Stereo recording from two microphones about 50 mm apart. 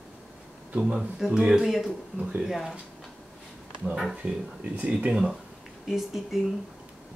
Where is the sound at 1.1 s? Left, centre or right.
Centre.